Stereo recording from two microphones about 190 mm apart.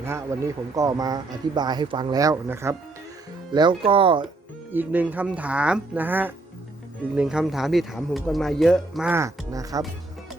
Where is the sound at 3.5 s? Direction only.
25° right (ahead or behind).